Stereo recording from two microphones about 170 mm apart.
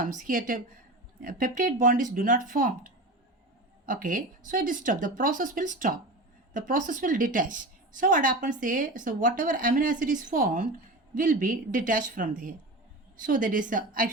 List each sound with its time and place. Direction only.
0.0 s a woman's voice: 50° right (ahead or behind)